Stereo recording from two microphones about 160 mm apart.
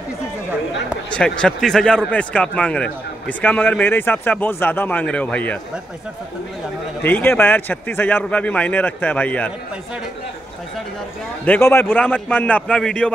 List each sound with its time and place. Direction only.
1.1 s speech: 5° left (ahead or behind)
7.0 s speech: 10° left (ahead or behind)
11.4 s speech: 10° left (ahead or behind)